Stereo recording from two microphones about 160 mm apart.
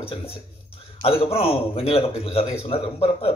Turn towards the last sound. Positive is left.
turn(degrees=35)  # may be behind; listen again after turning